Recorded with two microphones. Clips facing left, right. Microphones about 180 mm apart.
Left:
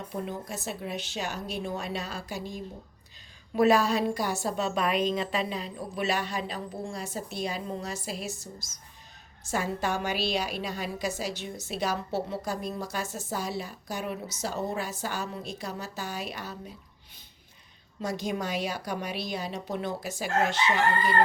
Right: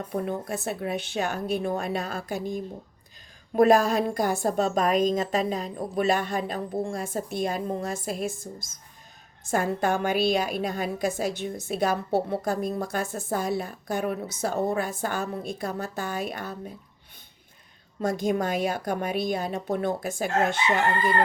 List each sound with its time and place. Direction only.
0.1 s a woman's voice: 55° right (ahead or behind)
18.0 s a woman's voice: 50° right (ahead or behind)